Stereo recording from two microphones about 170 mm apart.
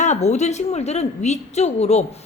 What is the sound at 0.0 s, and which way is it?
A woman's voice, 40° left (ahead or behind).